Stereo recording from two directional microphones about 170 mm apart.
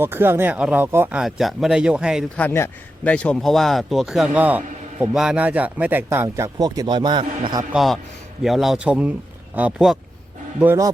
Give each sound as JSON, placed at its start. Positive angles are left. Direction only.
{"t": 0.0, "sound": "speech", "side_deg": -15}
{"t": 1.2, "sound": "speech", "side_deg": 0}
{"t": 2.3, "sound": "speech", "side_deg": 10}
{"t": 7.7, "sound": "speech", "side_deg": 0}
{"t": 10.6, "sound": "speech", "side_deg": -15}